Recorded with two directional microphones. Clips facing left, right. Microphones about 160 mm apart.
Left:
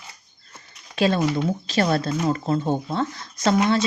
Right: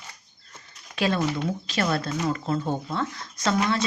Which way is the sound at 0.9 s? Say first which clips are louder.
Left 4 dB; 30° left (ahead or behind).